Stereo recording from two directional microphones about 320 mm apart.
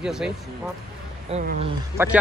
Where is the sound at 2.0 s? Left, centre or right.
Centre.